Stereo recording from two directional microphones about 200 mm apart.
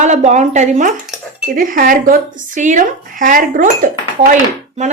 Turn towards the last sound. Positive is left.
turn(degrees=-35)  # may be behind; listen again after turning